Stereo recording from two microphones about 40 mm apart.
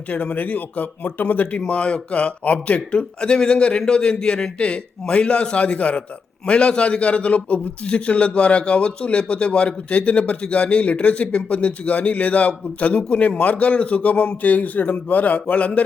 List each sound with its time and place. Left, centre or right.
0.3 s speech: left
1.5 s a man's voice: left